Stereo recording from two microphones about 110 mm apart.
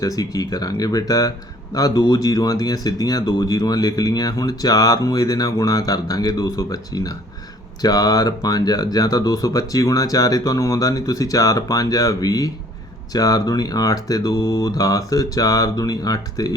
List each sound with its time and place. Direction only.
0.0 s speech: 35° left (ahead or behind)